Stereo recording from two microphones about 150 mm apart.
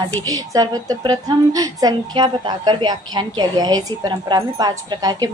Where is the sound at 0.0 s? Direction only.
25° right (ahead or behind).